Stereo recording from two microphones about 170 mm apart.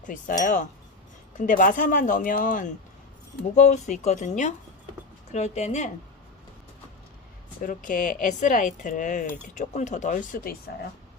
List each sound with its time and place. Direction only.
0.0 s speech: 50° left (ahead or behind)
7.6 s speech: 50° left (ahead or behind)